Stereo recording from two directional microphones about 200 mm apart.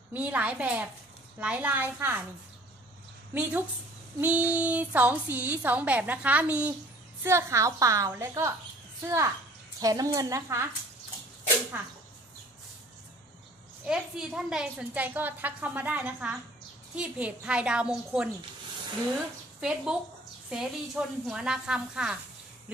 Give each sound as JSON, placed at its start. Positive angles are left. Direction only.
{"t": 0.1, "sound": "a woman's voice", "side_deg": -10}
{"t": 3.3, "sound": "a woman's voice", "side_deg": -10}
{"t": 13.8, "sound": "a woman's voice", "side_deg": -5}
{"t": 19.6, "sound": "a woman's voice", "side_deg": -5}